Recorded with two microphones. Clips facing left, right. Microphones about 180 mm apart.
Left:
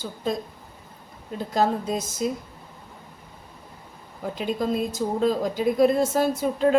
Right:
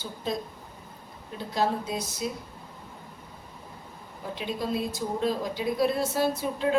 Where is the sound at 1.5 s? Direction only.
45° left (ahead or behind).